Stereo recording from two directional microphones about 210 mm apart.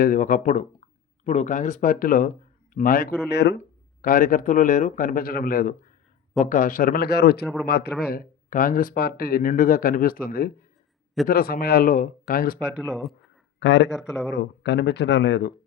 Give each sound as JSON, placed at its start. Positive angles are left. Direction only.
{"t": 0.0, "sound": "speech", "side_deg": 40}
{"t": 3.6, "sound": "speech", "side_deg": 40}
{"t": 12.9, "sound": "speech", "side_deg": 0}
{"t": 13.6, "sound": "speech", "side_deg": 60}